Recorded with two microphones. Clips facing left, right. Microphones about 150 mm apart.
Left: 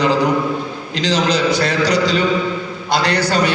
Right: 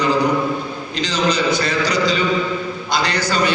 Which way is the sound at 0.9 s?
90° left.